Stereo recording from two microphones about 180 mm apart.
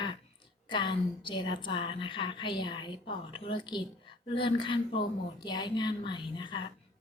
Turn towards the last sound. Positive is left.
turn(degrees=25)  # may be behind; listen again after turning